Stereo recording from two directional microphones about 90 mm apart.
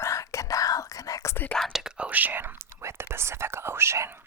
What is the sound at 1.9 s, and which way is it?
Speech, 15° right (ahead or behind).